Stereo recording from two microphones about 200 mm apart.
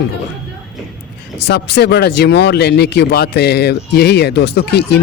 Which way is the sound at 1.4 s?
55° left (ahead or behind).